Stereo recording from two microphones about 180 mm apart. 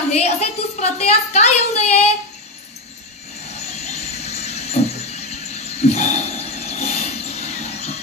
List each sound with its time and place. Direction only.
0.1 s a woman's voice: 35° left (ahead or behind)
3.5 s vehicle: 35° left (ahead or behind)